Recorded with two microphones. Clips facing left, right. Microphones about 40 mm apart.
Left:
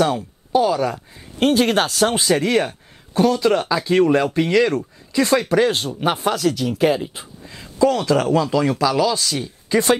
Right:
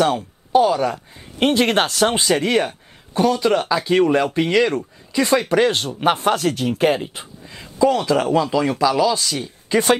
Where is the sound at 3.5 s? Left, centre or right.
Centre.